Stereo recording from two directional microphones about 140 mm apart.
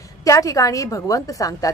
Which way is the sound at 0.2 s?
25° left (ahead or behind).